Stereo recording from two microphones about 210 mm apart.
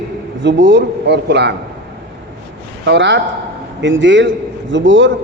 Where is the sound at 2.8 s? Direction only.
55° right (ahead or behind).